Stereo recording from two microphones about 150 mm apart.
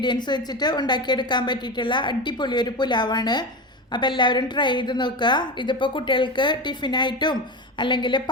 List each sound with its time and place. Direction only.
0.0 s a woman's voice: 30° left (ahead or behind)